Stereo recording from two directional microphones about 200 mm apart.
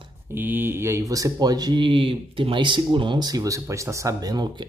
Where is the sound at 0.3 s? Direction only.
10° right (ahead or behind).